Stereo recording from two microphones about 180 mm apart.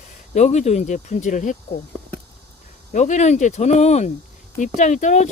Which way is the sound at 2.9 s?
40° left (ahead or behind).